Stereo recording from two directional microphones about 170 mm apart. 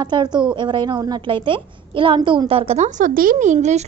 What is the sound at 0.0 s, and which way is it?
A woman's voice, 25° right (ahead or behind).